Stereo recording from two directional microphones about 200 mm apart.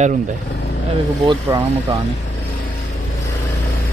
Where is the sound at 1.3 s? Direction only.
15° right (ahead or behind).